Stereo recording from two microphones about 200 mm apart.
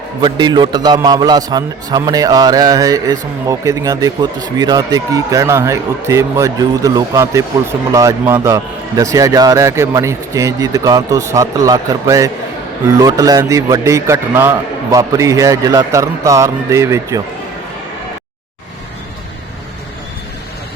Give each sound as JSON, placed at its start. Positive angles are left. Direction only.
{"t": 0.2, "sound": "a man's voice", "side_deg": -20}